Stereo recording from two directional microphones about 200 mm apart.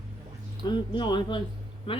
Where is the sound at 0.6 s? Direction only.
20° left (ahead or behind).